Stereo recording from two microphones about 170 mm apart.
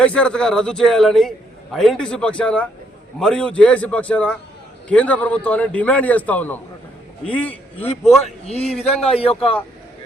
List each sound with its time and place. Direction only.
0.0 s a man's voice: 5° left (ahead or behind)
8.4 s speech: 40° left (ahead or behind)